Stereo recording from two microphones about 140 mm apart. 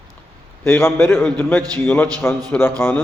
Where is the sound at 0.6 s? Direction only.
15° left (ahead or behind).